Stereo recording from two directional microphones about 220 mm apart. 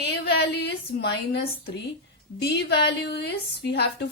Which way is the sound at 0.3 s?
50° left (ahead or behind).